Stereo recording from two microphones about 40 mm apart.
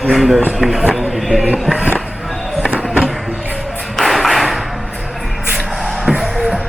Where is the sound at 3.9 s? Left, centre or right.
Centre.